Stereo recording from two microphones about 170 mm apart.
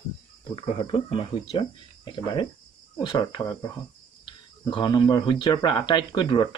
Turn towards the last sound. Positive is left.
turn(degrees=25)  # may be behind; listen again after turning